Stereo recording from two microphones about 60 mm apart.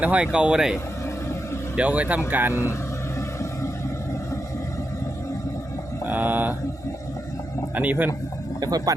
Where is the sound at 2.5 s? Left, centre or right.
Left.